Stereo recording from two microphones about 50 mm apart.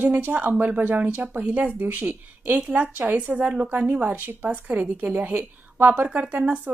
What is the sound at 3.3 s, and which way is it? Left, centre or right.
A woman's voice, right.